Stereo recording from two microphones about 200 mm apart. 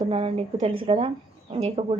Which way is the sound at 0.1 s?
30° right (ahead or behind).